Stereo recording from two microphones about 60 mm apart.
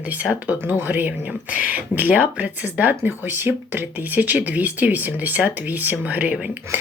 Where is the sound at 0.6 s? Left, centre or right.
Right.